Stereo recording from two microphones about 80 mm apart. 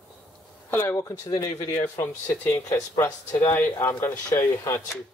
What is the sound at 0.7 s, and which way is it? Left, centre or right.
Speech, left.